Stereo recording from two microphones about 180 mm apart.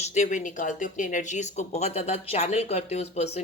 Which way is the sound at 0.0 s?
40° left (ahead or behind).